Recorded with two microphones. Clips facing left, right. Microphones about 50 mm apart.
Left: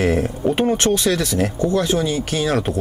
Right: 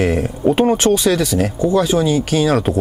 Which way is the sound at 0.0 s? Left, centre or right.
Centre.